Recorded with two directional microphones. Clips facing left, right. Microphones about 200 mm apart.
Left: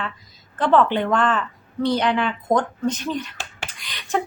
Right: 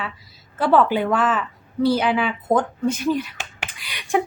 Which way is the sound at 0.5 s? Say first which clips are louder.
Even; 10° right (ahead or behind).